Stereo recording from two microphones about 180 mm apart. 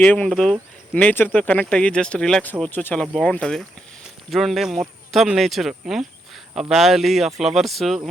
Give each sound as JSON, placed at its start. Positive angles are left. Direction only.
{"t": 0.0, "sound": "speech", "side_deg": 5}